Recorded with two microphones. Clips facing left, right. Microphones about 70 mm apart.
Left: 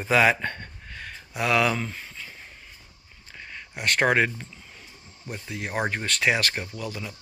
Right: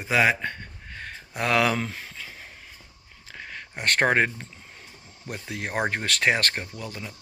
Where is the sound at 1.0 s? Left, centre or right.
Right.